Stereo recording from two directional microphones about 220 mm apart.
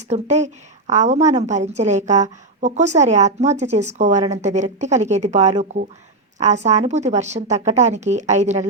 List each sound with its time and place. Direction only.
0.1 s a woman's voice: 30° right (ahead or behind)